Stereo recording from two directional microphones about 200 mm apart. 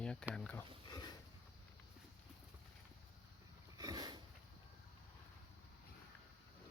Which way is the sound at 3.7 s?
20° right (ahead or behind).